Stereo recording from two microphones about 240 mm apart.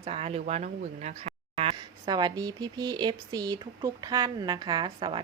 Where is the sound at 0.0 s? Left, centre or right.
Right.